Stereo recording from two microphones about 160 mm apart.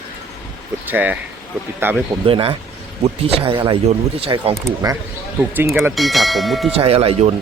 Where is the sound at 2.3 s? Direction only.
35° right (ahead or behind).